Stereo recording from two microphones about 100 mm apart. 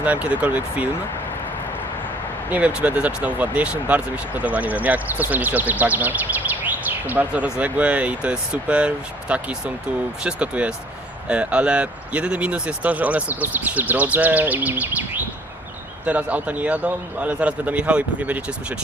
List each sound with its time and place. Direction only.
0.0 s speech: 15° right (ahead or behind)
2.5 s speech: 15° right (ahead or behind)